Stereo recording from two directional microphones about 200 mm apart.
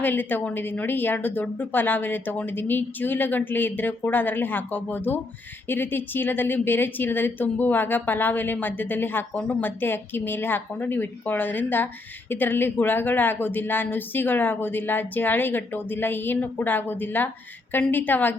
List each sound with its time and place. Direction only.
0.0 s a woman's voice: 10° left (ahead or behind)